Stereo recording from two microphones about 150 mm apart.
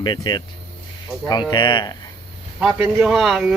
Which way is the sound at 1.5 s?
30° left (ahead or behind).